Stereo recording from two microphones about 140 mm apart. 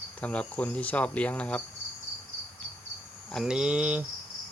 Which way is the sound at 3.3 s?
5° right (ahead or behind).